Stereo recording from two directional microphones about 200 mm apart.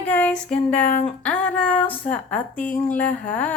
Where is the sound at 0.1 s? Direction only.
5° left (ahead or behind).